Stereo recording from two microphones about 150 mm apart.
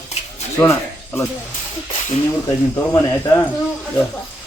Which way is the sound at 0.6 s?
20° left (ahead or behind).